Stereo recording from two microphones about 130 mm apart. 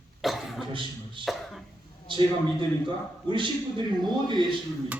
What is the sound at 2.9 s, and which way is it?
A man's voice, 40° right (ahead or behind).